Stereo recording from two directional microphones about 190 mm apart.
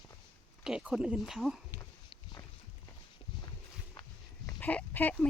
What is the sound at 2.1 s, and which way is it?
Walk, 25° left (ahead or behind).